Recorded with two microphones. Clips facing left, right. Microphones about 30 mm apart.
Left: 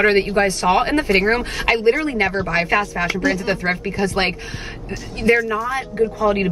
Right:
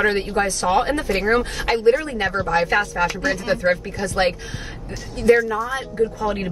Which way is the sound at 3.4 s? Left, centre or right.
Left.